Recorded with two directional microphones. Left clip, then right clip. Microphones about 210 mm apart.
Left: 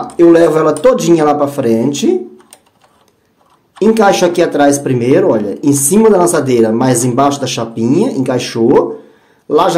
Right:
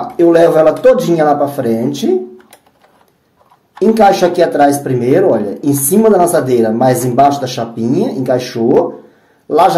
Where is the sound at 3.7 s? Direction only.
25° left (ahead or behind).